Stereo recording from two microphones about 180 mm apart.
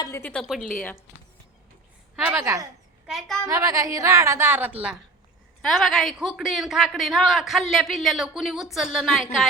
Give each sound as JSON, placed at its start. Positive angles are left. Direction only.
{"t": 0.0, "sound": "a woman's voice", "side_deg": 15}
{"t": 2.3, "sound": "a woman's voice", "side_deg": -15}
{"t": 3.1, "sound": "speech", "side_deg": 0}
{"t": 3.4, "sound": "a woman's voice", "side_deg": -20}